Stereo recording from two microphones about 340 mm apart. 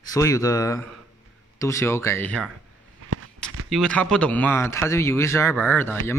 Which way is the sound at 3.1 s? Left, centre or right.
Right.